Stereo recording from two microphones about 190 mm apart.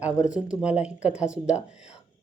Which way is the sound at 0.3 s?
5° right (ahead or behind).